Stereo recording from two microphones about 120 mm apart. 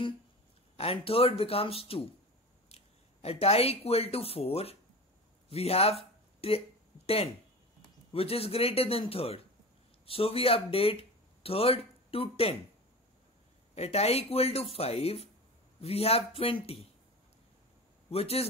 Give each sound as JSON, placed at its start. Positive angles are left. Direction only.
{"t": 0.7, "sound": "a man's voice", "side_deg": 55}
{"t": 8.1, "sound": "a man's voice", "side_deg": 55}
{"t": 13.7, "sound": "speech", "side_deg": 60}
{"t": 18.1, "sound": "speech", "side_deg": 55}